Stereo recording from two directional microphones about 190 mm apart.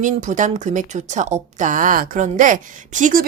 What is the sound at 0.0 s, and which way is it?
Speech, 40° right (ahead or behind).